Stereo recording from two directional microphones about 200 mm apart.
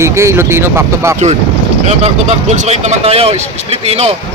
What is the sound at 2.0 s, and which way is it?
Speech, 35° right (ahead or behind).